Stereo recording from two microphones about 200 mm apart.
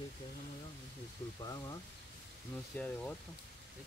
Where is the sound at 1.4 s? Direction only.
20° left (ahead or behind).